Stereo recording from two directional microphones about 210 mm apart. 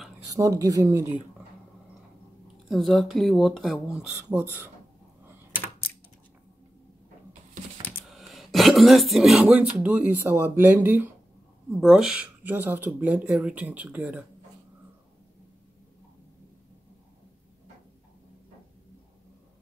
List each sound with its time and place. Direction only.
0.3 s speech: 15° right (ahead or behind)
2.7 s speech: centre (ahead or behind)
7.8 s speech: centre (ahead or behind)